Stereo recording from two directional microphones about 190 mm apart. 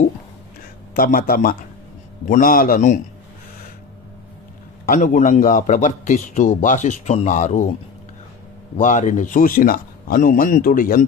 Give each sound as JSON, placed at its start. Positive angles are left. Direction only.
{"t": 0.9, "sound": "a man's voice", "side_deg": 50}
{"t": 4.8, "sound": "a man's voice", "side_deg": 45}
{"t": 8.7, "sound": "a man's voice", "side_deg": 40}